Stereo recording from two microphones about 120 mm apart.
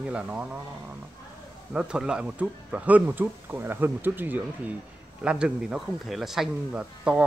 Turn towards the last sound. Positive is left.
turn(degrees=-10)  # may be behind; listen again after turning